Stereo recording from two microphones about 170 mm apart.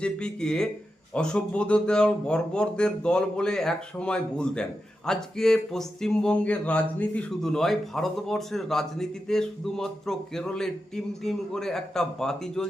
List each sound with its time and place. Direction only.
0.0 s speech: 5° left (ahead or behind)